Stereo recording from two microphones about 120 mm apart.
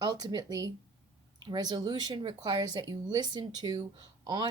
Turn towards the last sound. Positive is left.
turn(degrees=-40)  # may be behind; listen again after turning